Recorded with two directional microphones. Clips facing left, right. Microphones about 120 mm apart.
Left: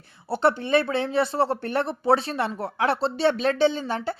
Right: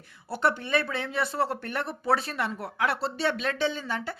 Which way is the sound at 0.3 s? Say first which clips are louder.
Left 5 dB; 30° left (ahead or behind).